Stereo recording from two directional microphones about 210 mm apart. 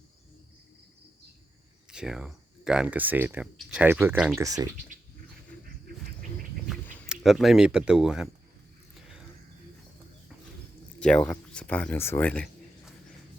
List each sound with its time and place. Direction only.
1.9 s speech: 5° right (ahead or behind)
4.4 s speech: 15° right (ahead or behind)
7.1 s speech: centre (ahead or behind)
9.0 s cricket: 5° right (ahead or behind)
11.0 s speech: 5° left (ahead or behind)